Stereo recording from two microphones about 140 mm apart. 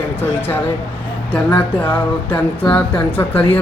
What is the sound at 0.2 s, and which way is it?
Music, 15° left (ahead or behind).